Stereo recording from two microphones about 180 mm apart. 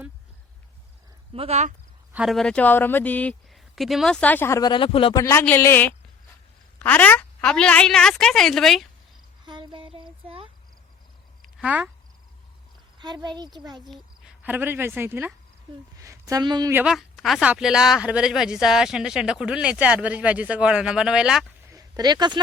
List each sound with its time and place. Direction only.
1.3 s speech: 35° right (ahead or behind)
2.1 s speech: centre (ahead or behind); by 5.2 s 30° left (ahead or behind)
5.2 s speech: 15° left (ahead or behind)
9.5 s a sound: 25° right (ahead or behind)
11.4 s a sound: 5° right (ahead or behind)
13.0 s speech: 25° right (ahead or behind)
14.4 s speech: 10° right (ahead or behind)
16.7 s speech: 5° right (ahead or behind)
21.7 s a sound: 20° right (ahead or behind)